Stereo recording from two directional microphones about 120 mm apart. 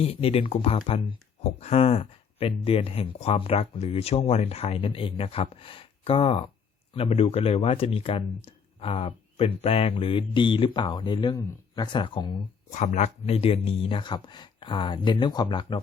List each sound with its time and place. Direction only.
0.0 s speech: 55° left (ahead or behind)
1.5 s speech: 60° left (ahead or behind); by 12.4 s 45° left (ahead or behind)
12.7 s speech: 85° left; by 15.6 s 40° left (ahead or behind)